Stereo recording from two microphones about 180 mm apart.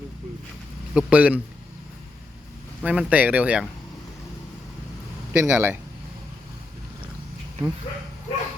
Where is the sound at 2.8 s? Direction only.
5° right (ahead or behind).